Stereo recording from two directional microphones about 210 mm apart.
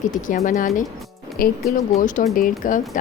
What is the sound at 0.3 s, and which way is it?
Speech, 40° left (ahead or behind).